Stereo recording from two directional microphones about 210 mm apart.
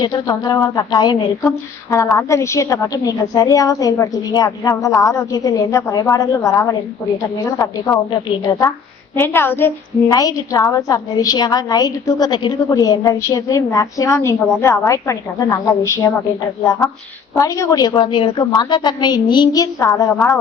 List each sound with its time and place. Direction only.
0.0 s a woman's voice: 20° left (ahead or behind)
17.3 s a woman's voice: 15° left (ahead or behind)